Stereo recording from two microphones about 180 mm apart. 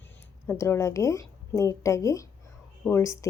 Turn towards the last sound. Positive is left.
turn(degrees=15)  # may be behind; listen again after turning